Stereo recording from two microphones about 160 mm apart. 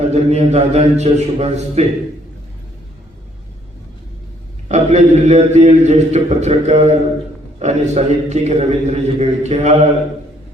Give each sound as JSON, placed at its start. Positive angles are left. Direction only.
{"t": 0.0, "sound": "a man's voice", "side_deg": -45}
{"t": 4.7, "sound": "a man's voice", "side_deg": -45}